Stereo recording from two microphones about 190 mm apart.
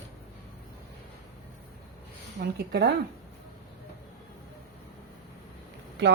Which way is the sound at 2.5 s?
60° right (ahead or behind).